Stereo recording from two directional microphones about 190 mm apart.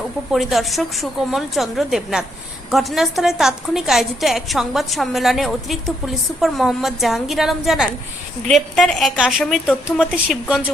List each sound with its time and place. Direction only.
0.3 s a woman's voice: centre (ahead or behind)